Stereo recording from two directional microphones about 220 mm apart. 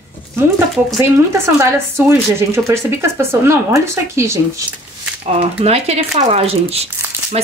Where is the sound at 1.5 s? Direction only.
10° right (ahead or behind).